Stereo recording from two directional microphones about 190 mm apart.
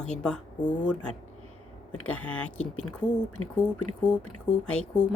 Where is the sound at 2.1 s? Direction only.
5° left (ahead or behind).